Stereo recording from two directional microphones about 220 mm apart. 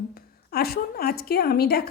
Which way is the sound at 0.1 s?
45° left (ahead or behind).